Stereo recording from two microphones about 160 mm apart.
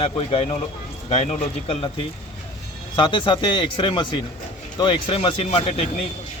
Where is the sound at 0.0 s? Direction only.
35° left (ahead or behind).